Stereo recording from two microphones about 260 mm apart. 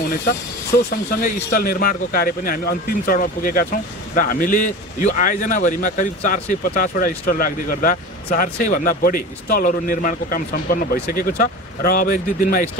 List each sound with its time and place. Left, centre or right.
0.8 s speech: left